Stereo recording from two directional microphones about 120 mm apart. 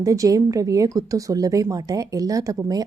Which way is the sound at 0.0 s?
30° right (ahead or behind).